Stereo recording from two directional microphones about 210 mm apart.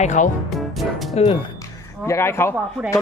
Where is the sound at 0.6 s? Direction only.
Centre (ahead or behind).